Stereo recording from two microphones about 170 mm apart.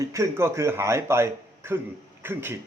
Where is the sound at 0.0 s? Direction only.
15° right (ahead or behind).